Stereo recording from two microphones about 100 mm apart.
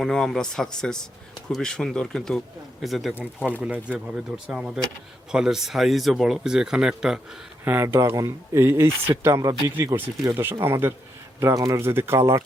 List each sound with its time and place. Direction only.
0.0 s speech: 5° left (ahead or behind)
3.6 s speech: 10° right (ahead or behind)
7.6 s speech: 20° right (ahead or behind)
7.9 s speech: 35° right (ahead or behind)
10.2 s speech: 25° right (ahead or behind)
11.8 s speech: 25° right (ahead or behind)